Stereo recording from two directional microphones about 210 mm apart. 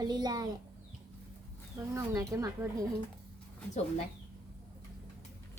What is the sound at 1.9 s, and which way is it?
Speech, 15° right (ahead or behind).